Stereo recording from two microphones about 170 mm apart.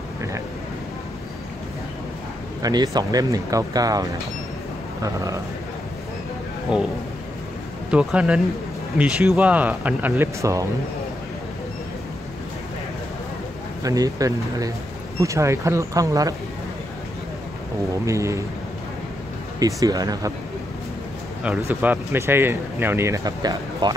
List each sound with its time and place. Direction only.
2.6 s speech: 20° right (ahead or behind)
7.9 s speech: 5° right (ahead or behind)
13.8 s speech: 20° right (ahead or behind)
18.0 s speech: 15° right (ahead or behind)
19.6 s speech: 20° right (ahead or behind)
21.4 s speech: 5° right (ahead or behind); by 23.9 s 20° right (ahead or behind)